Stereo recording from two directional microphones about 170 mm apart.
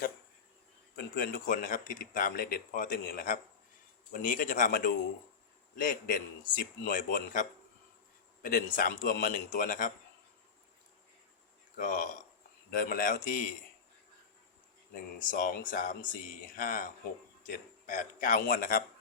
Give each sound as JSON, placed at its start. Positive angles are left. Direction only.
{"t": 0.9, "sound": "speech", "side_deg": 60}
{"t": 11.8, "sound": "a man's voice", "side_deg": 50}
{"t": 15.2, "sound": "a man's voice", "side_deg": 50}